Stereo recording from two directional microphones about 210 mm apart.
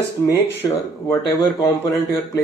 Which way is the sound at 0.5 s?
15° left (ahead or behind).